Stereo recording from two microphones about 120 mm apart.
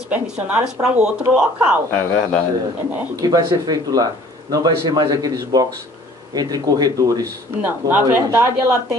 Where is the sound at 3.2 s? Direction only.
30° right (ahead or behind).